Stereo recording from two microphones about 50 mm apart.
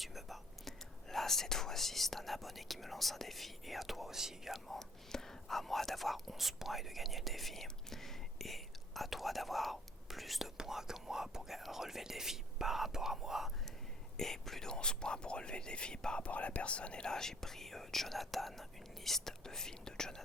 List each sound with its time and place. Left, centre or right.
0.0 s whispering: centre
1.1 s speech: centre
4.8 s speech: centre
14.2 s speech: centre